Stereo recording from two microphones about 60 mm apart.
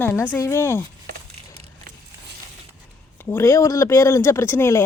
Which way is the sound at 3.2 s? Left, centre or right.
Left.